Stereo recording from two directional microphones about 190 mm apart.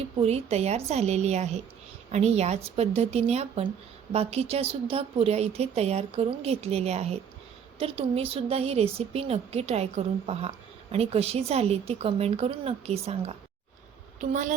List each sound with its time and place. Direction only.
0.2 s a woman's voice: 35° right (ahead or behind)